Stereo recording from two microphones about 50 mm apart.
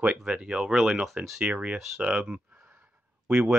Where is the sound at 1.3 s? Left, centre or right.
Centre.